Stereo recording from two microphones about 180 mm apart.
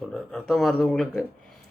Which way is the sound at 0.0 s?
5° left (ahead or behind).